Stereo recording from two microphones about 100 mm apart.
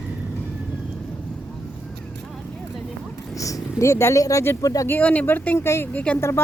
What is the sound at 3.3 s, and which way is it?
Speech, 35° left (ahead or behind).